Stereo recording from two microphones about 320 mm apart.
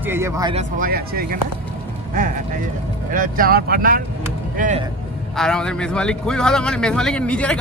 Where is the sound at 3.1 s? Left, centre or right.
Right.